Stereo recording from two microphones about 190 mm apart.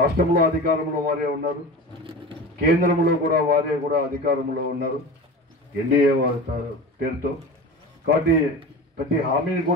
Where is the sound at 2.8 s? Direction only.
45° right (ahead or behind).